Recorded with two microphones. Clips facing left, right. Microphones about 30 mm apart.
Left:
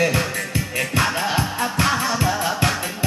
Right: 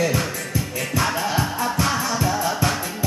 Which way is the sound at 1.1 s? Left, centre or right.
Left.